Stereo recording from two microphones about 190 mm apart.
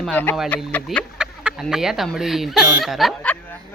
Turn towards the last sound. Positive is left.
turn(degrees=5)  # may be behind; listen again after turning